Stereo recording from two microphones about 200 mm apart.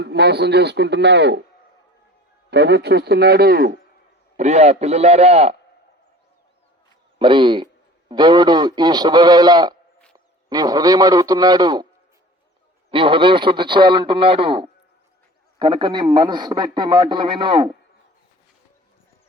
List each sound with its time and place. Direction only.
0.0 s a man's voice: 55° right (ahead or behind)
2.5 s a man's voice: 60° right (ahead or behind)
4.4 s a man's voice: 35° right (ahead or behind)
7.2 s a man's voice: 25° right (ahead or behind)
12.9 s a man's voice: 25° right (ahead or behind)